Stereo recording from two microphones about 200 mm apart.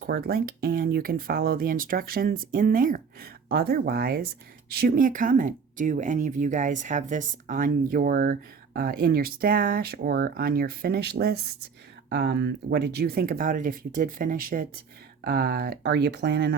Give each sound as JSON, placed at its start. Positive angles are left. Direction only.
{"t": 0.0, "sound": "speech", "side_deg": -50}